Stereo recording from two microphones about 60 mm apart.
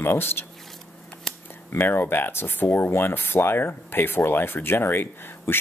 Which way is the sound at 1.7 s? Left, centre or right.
Left.